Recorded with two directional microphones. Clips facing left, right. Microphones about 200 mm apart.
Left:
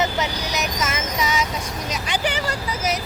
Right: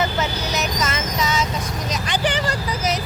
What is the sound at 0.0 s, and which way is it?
Vehicle, 15° left (ahead or behind).